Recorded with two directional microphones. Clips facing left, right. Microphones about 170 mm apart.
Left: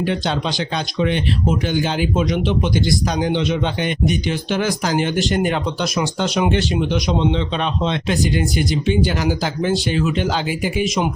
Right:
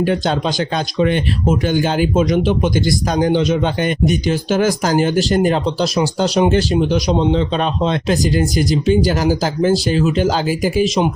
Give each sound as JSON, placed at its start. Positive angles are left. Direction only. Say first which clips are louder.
{"t": 0.0, "sound": "speech", "louder": "right 4 dB", "side_deg": -45}